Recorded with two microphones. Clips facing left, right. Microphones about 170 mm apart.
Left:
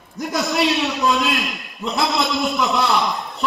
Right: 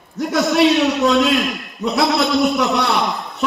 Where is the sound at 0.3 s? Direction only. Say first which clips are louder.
Right 6 dB; 75° right (ahead or behind).